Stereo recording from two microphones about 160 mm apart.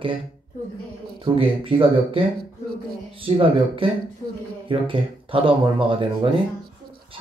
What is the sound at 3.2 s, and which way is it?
Speech, 35° right (ahead or behind).